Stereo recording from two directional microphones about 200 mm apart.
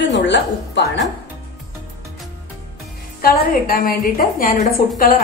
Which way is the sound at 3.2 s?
45° left (ahead or behind).